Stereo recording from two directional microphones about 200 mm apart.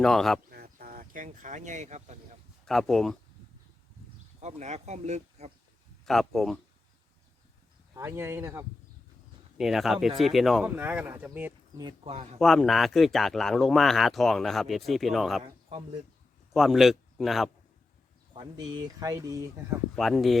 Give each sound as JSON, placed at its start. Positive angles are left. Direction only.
{"t": 0.0, "sound": "speech", "side_deg": 0}
{"t": 0.5, "sound": "speech", "side_deg": -50}
{"t": 2.6, "sound": "speech", "side_deg": 0}
{"t": 4.4, "sound": "speech", "side_deg": -35}
{"t": 6.1, "sound": "speech", "side_deg": 0}
{"t": 7.9, "sound": "speech", "side_deg": -15}
{"t": 9.6, "sound": "speech", "side_deg": 0}
{"t": 11.8, "sound": "speech", "side_deg": -25}
{"t": 12.4, "sound": "speech", "side_deg": 0}
{"t": 16.5, "sound": "a man's voice", "side_deg": 0}
{"t": 18.3, "sound": "speech", "side_deg": -20}
{"t": 20.0, "sound": "speech", "side_deg": 0}